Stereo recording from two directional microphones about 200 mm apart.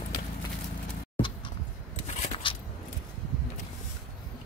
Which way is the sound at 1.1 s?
25° left (ahead or behind).